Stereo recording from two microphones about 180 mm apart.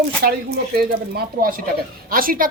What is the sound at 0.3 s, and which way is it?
Speech, 60° right (ahead or behind).